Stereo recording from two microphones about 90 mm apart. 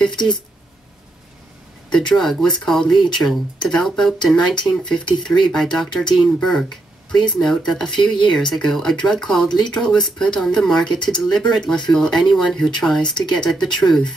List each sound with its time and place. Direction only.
0.0 s speech: 5° left (ahead or behind)
2.0 s speech: 5° left (ahead or behind)
8.0 s speech: 60° left (ahead or behind)
8.3 s speech: 5° left (ahead or behind)